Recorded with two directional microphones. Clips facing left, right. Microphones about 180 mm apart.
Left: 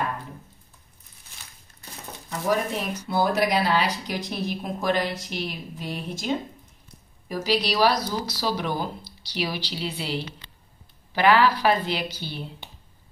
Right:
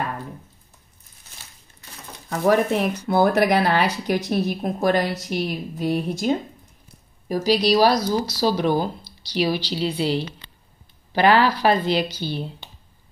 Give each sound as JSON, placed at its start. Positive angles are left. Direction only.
{"t": 2.2, "sound": "a woman's voice", "side_deg": -60}